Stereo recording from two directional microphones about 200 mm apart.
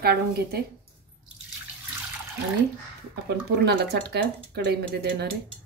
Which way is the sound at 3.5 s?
55° right (ahead or behind).